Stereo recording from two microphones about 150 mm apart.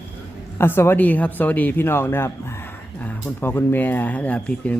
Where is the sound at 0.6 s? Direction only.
15° left (ahead or behind).